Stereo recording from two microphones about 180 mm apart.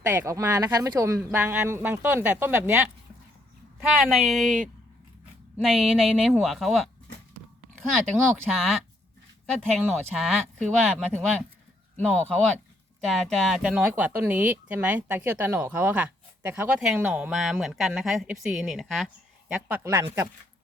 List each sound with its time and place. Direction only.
0.1 s speech: 15° right (ahead or behind); by 6.9 s centre (ahead or behind)
8.4 s speech: centre (ahead or behind)
19.7 s speech: 15° right (ahead or behind)